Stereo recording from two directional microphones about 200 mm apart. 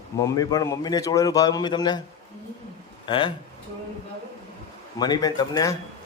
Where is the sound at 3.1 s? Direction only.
25° left (ahead or behind).